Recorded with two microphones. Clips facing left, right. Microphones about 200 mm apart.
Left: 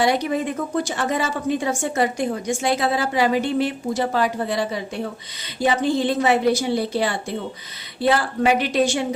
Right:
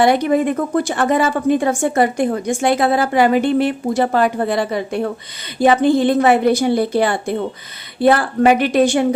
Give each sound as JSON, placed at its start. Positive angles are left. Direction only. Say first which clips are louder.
{"t": 0.0, "sound": "a woman's voice", "louder": "right 6 dB", "side_deg": -55}